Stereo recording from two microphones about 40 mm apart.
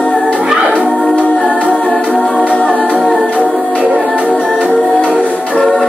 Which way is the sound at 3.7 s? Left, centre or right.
Right.